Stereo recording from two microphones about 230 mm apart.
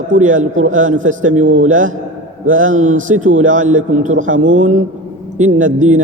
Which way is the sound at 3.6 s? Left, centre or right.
Right.